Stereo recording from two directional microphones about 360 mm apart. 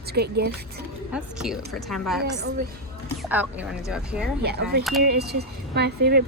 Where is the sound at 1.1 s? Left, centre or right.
Centre.